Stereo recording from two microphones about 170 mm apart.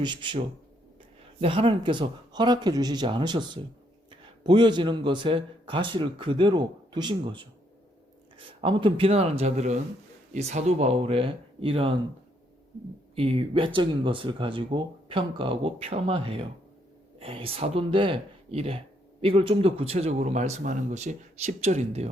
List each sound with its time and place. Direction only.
0.0 s a man's voice: 30° right (ahead or behind)
13.1 s speech: 35° right (ahead or behind)